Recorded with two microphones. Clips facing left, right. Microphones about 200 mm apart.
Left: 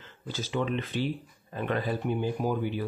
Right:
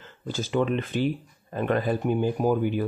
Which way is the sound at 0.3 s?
50° right (ahead or behind).